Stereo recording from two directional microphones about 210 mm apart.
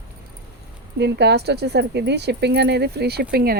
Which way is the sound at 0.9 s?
55° right (ahead or behind).